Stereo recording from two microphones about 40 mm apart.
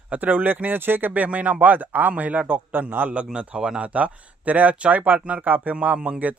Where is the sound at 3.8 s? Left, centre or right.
Right.